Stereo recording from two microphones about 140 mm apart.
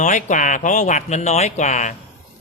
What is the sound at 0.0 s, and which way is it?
Speech, 60° left (ahead or behind).